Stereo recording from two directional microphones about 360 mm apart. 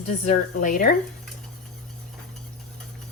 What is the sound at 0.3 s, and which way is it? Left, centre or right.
Speech, left.